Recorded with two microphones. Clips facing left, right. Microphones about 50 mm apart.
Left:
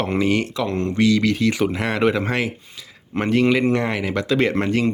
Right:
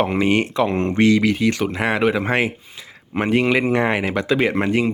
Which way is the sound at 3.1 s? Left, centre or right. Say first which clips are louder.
Even; centre.